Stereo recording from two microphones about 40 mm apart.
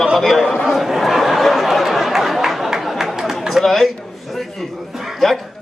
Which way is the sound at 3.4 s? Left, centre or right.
Centre.